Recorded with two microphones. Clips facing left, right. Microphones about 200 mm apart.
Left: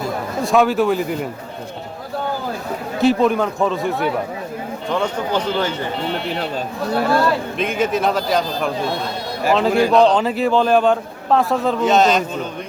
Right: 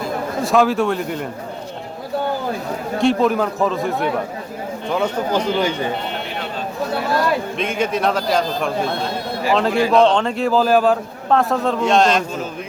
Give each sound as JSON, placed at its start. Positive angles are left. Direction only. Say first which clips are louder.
{"t": 0.4, "sound": "a man's voice", "louder": "left 1 dB", "side_deg": 0}
{"t": 3.0, "sound": "a man's voice", "louder": "left 1 dB", "side_deg": 0}
{"t": 7.6, "sound": "a man's voice", "louder": "left 3 dB", "side_deg": 0}